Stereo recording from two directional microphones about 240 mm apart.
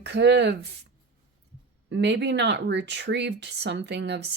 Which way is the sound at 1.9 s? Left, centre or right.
Right.